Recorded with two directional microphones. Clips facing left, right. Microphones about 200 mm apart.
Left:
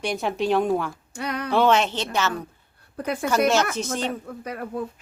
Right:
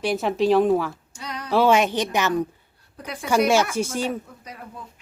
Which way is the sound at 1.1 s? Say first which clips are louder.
Left 6 dB; 60° left (ahead or behind).